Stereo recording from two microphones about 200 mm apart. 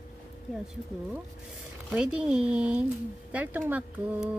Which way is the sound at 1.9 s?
5° right (ahead or behind).